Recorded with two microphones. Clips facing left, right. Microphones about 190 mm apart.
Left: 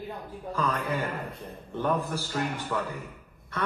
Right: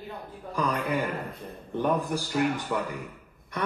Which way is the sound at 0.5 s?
15° right (ahead or behind).